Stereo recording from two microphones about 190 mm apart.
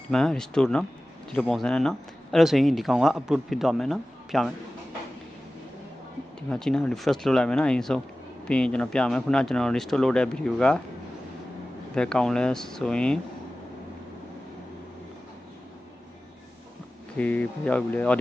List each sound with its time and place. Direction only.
0.1 s speech: 5° left (ahead or behind)
6.5 s speech: 5° left (ahead or behind)
11.9 s speech: 5° left (ahead or behind)
17.2 s speech: 10° left (ahead or behind)